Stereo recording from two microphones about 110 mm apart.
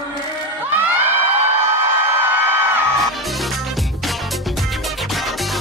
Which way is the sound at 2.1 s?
20° right (ahead or behind).